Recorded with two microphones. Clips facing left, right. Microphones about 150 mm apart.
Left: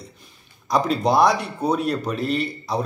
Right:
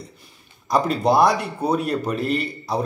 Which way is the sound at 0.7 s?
5° right (ahead or behind).